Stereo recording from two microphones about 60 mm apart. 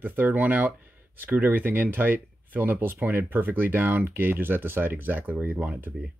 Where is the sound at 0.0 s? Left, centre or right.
Right.